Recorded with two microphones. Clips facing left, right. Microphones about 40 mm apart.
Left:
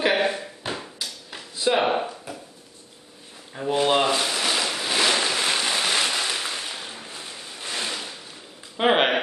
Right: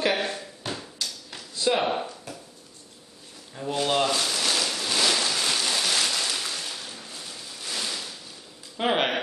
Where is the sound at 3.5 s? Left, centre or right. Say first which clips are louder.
Left 4 dB; left.